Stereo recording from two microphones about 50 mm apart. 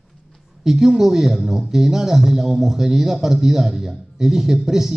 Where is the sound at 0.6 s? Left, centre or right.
Centre.